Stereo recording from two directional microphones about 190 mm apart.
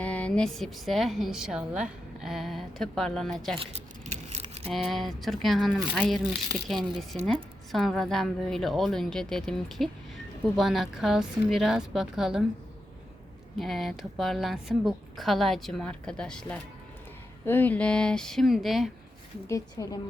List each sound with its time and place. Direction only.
0.0 s a woman's voice: 5° left (ahead or behind)
3.6 s keys jangling: 30° right (ahead or behind)
4.7 s a woman's voice: centre (ahead or behind)
13.6 s a woman's voice: centre (ahead or behind)
19.5 s a woman's voice: 15° left (ahead or behind)